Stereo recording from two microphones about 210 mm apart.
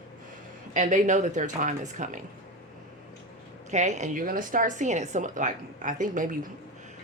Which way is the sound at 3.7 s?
35° right (ahead or behind).